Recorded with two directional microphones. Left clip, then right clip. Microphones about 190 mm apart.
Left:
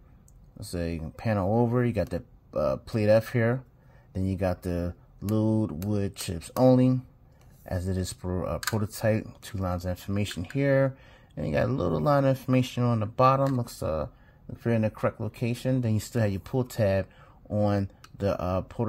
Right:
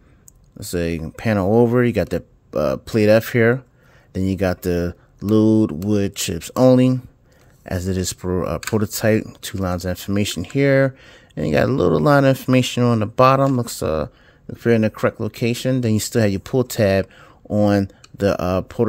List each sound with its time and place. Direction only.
0.6 s speech: 55° right (ahead or behind)